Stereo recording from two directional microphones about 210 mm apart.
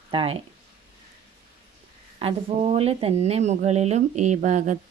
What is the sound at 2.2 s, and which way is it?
Speech, 30° right (ahead or behind).